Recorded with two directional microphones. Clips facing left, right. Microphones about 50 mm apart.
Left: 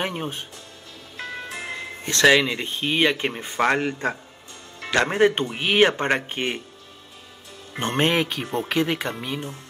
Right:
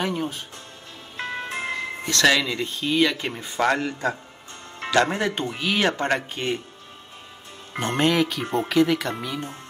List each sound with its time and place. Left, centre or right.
0.0 s speech: left
1.1 s music: right
2.2 s speech: left
7.8 s speech: left